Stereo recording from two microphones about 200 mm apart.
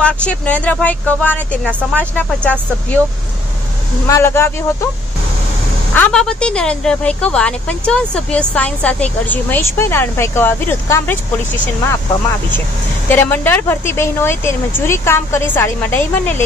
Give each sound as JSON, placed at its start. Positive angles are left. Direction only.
{"t": 0.0, "sound": "speech", "side_deg": 5}
{"t": 4.1, "sound": "speech", "side_deg": 10}
{"t": 5.9, "sound": "speech", "side_deg": 5}
{"t": 13.1, "sound": "speech", "side_deg": 10}